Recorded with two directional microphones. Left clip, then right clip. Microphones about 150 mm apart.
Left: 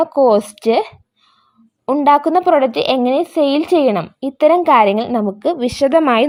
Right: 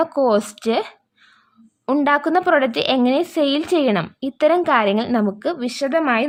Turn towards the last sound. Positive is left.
turn(degrees=30)  # may be behind; listen again after turning